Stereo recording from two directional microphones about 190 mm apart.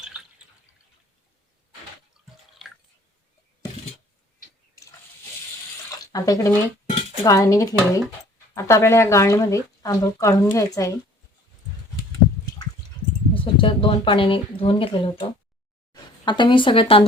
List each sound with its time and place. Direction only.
2.2 s water: centre (ahead or behind)
2.6 s drip: centre (ahead or behind)
4.7 s a sound: 15° left (ahead or behind)
6.1 s speech: 20° left (ahead or behind)
13.3 s a woman's voice: 30° left (ahead or behind)